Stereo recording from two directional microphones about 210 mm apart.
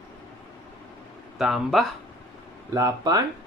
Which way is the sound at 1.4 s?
Centre (ahead or behind).